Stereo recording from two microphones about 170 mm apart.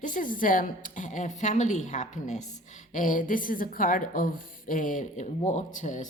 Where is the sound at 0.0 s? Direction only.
50° left (ahead or behind).